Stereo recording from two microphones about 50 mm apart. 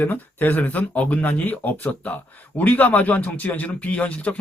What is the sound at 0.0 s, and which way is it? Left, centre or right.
Speech, left.